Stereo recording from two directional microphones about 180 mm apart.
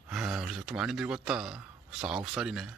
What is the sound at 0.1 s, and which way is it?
Speech, 5° right (ahead or behind).